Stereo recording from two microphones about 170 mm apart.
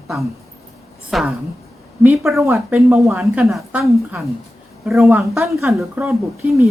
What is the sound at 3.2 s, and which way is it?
Speech, centre (ahead or behind).